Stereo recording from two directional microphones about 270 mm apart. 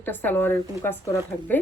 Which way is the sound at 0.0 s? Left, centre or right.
Centre.